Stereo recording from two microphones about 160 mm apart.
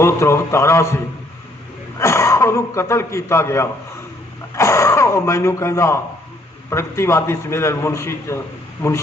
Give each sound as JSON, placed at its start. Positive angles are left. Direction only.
{"t": 0.0, "sound": "a man's voice", "side_deg": 15}
{"t": 2.0, "sound": "a man's voice", "side_deg": 20}